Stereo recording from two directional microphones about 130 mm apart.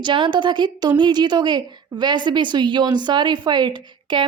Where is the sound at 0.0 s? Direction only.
35° right (ahead or behind).